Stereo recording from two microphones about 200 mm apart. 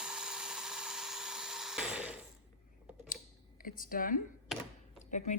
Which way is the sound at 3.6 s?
45° left (ahead or behind).